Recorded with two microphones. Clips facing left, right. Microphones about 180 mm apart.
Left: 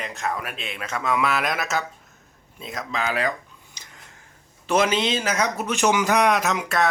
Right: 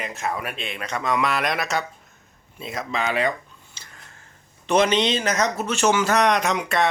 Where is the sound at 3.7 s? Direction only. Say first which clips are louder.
Even; 15° left (ahead or behind).